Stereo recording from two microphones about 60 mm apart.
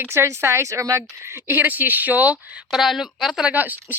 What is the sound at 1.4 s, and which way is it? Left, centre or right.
Speech, right.